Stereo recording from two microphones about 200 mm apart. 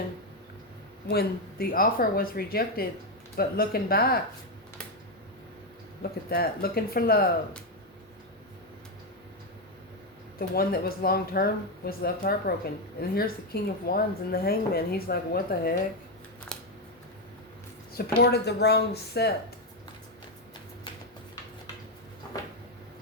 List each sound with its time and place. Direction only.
1.0 s a woman's voice: 50° left (ahead or behind)
6.0 s a woman's voice: 50° left (ahead or behind)
10.3 s a woman's voice: 50° left (ahead or behind)
16.5 s scissors: 5° left (ahead or behind)
17.9 s speech: 55° left (ahead or behind)